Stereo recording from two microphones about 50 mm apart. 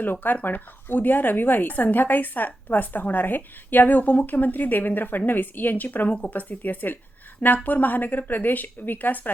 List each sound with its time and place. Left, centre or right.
0.0 s speech: left